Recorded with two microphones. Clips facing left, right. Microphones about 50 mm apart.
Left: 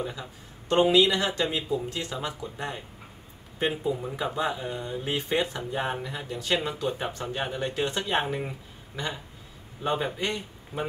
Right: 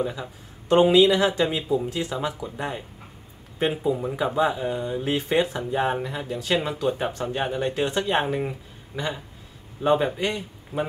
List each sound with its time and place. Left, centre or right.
0.0 s speech: centre